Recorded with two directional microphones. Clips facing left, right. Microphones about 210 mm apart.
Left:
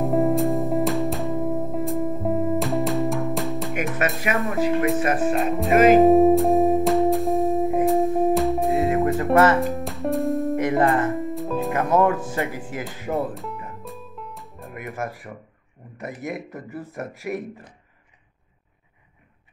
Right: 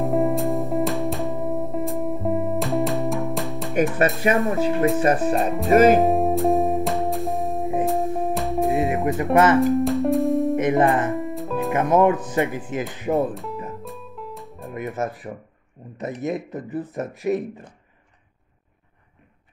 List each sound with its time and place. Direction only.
0.0 s music: centre (ahead or behind)
3.7 s speech: 30° right (ahead or behind)
5.5 s music: centre (ahead or behind)
8.7 s music: 15° right (ahead or behind)
9.6 s music: centre (ahead or behind)
10.5 s speech: 20° right (ahead or behind)
11.1 s music: centre (ahead or behind)
11.7 s speech: 15° right (ahead or behind)
13.3 s music: centre (ahead or behind)
14.7 s music: 20° right (ahead or behind)
16.0 s speech: 20° right (ahead or behind)